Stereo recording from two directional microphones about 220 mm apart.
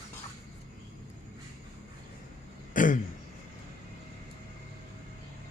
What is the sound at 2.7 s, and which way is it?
Throat clearing, 35° left (ahead or behind).